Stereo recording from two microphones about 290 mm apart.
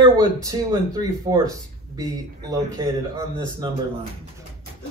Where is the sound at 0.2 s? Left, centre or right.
Centre.